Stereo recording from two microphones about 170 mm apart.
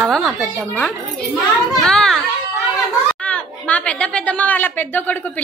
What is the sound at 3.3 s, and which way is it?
Speech, 5° left (ahead or behind).